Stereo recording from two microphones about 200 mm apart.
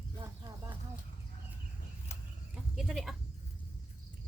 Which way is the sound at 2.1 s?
35° left (ahead or behind).